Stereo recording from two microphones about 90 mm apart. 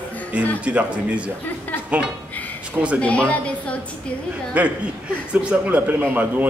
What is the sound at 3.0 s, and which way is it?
Speech, 15° left (ahead or behind).